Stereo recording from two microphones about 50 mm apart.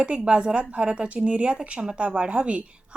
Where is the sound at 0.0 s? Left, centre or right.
Right.